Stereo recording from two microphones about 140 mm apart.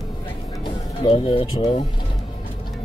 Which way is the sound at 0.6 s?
40° left (ahead or behind).